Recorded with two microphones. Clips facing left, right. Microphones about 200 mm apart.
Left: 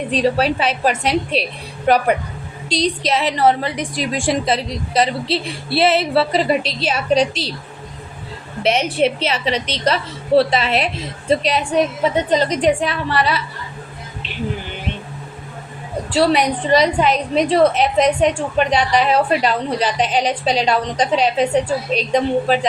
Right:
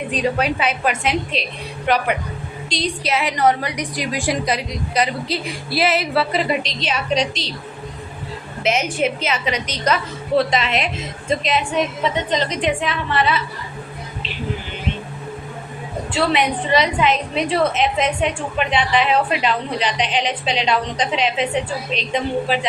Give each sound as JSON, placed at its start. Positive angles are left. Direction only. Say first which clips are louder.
{"t": 0.1, "sound": "a woman's voice", "louder": "left 4 dB", "side_deg": 35}
{"t": 2.6, "sound": "a woman's voice", "louder": "left 5 dB", "side_deg": 0}
{"t": 3.0, "sound": "a woman's voice", "louder": "even", "side_deg": 30}
{"t": 8.6, "sound": "a woman's voice", "louder": "left 3 dB", "side_deg": 35}
{"t": 16.1, "sound": "a woman's voice", "louder": "left 4 dB", "side_deg": 40}